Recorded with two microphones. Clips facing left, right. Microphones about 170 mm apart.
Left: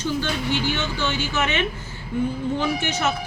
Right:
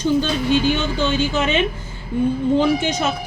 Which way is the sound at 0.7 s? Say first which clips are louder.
Right 6 dB; 15° right (ahead or behind).